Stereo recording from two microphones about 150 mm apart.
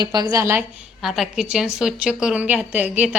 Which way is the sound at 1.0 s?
5° right (ahead or behind).